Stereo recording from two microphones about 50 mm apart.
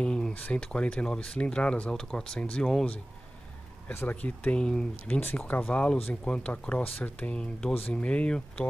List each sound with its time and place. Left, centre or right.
0.0 s a sound: centre
0.3 s speech: left
2.0 s speech: centre
3.9 s speech: left
4.2 s speech: centre
5.2 s speech: left
5.7 s speech: left